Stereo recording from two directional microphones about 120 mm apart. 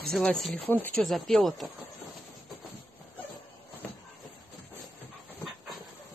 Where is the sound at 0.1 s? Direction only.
5° left (ahead or behind).